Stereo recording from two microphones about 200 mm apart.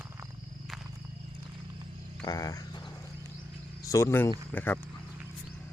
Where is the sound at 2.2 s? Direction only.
20° left (ahead or behind).